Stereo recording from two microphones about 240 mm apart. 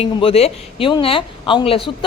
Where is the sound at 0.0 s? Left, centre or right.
Left.